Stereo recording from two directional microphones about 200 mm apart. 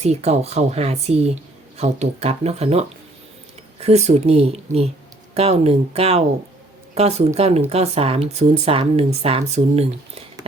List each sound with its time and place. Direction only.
0.0 s speech: 30° right (ahead or behind)